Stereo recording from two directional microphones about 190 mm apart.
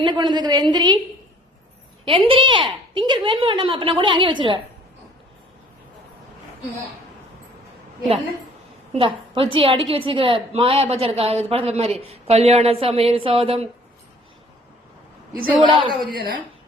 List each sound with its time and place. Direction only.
0.0 s a woman's voice: 25° right (ahead or behind)
2.0 s a woman's voice: 30° right (ahead or behind)
8.9 s a woman's voice: 30° right (ahead or behind)
15.6 s a woman's voice: 25° right (ahead or behind)